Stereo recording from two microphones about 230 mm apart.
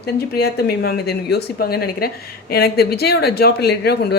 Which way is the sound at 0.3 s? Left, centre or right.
Left.